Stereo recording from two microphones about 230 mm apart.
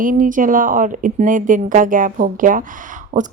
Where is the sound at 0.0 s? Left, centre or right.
Right.